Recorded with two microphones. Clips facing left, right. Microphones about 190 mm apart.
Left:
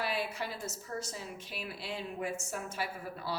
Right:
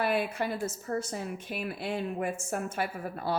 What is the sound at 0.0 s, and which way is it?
A woman's voice, 55° right (ahead or behind).